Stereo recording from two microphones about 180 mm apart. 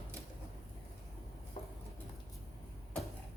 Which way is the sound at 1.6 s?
30° left (ahead or behind).